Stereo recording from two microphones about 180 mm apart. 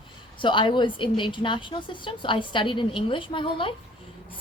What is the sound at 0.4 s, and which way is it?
A woman's voice, 25° left (ahead or behind).